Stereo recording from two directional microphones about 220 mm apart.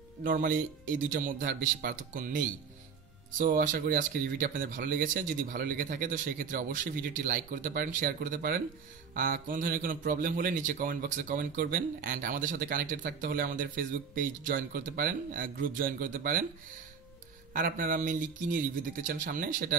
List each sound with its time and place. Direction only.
0.2 s speech: 40° right (ahead or behind)
17.5 s speech: 40° right (ahead or behind)